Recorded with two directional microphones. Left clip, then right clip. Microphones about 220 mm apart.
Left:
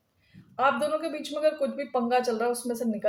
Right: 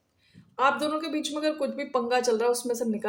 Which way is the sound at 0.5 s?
40° right (ahead or behind).